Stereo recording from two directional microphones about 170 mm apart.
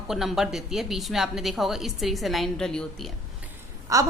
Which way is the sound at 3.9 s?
20° right (ahead or behind).